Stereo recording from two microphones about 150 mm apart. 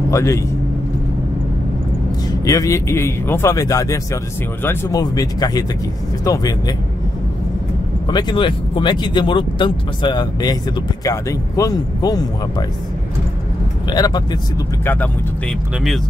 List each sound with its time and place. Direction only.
0.1 s speech: 20° left (ahead or behind)
2.4 s speech: 20° left (ahead or behind)
8.1 s speech: 30° left (ahead or behind)
13.8 s speech: 25° left (ahead or behind)